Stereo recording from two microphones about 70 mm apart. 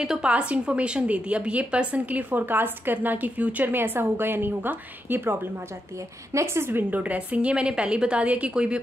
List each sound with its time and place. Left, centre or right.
0.0 s a woman's voice: centre; by 5.4 s right
6.3 s a woman's voice: right; by 8.7 s centre